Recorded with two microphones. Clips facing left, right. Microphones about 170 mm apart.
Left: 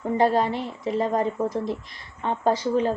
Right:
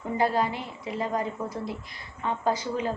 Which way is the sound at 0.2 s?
35° left (ahead or behind).